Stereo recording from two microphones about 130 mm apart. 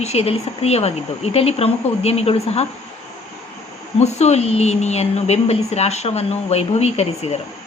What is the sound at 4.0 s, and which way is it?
A woman's voice, 60° left (ahead or behind).